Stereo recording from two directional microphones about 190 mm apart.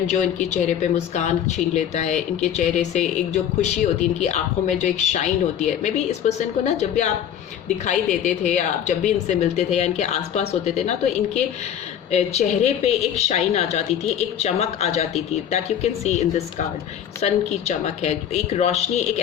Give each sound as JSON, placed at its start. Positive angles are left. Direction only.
{"t": 0.1, "sound": "a woman's voice", "side_deg": 40}